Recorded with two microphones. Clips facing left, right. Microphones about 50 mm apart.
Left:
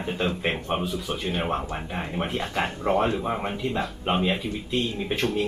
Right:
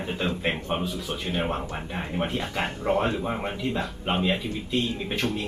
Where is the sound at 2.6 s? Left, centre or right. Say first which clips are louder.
Left 1 dB; centre.